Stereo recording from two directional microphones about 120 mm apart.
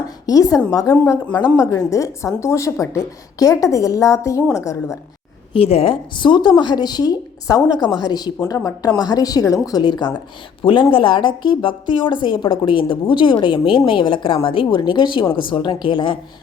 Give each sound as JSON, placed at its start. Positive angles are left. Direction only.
{"t": 0.3, "sound": "a woman's voice", "side_deg": 30}
{"t": 5.5, "sound": "a woman's voice", "side_deg": 55}